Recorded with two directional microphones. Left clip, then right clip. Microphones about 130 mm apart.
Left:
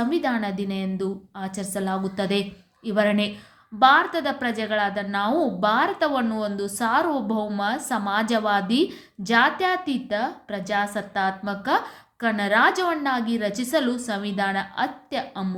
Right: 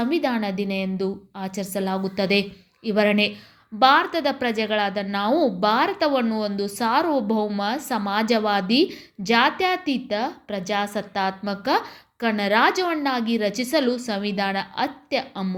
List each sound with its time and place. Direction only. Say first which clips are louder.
0.0 s a woman's voice: right 1 dB; 20° right (ahead or behind)